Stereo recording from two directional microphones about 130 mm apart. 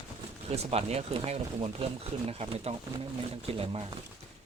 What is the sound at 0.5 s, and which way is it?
Speech, 55° right (ahead or behind).